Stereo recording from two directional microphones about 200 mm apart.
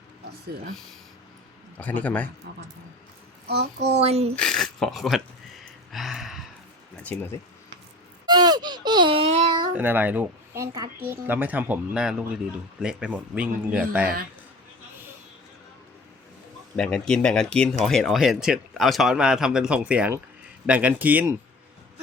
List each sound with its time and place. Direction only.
1.8 s a man's voice: 5° left (ahead or behind)
3.4 s a child's voice: 55° right (ahead or behind)
3.9 s speech: 30° right (ahead or behind)
4.4 s speech: centre (ahead or behind)
5.9 s a sound: centre (ahead or behind)
7.0 s a man's voice: 10° left (ahead or behind)
8.3 s a sound: 20° right (ahead or behind)
9.7 s speech: 10° right (ahead or behind)
16.7 s speech: 5° left (ahead or behind)